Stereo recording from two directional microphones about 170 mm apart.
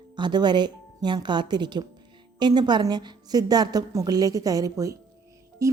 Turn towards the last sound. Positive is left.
turn(degrees=-20)  # may be behind; listen again after turning